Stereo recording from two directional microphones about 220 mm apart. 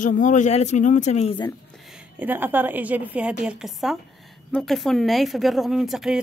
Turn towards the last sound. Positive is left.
turn(degrees=0)  # may be behind; listen again after turning